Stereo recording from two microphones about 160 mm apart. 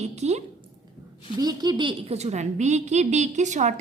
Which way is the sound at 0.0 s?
45° right (ahead or behind).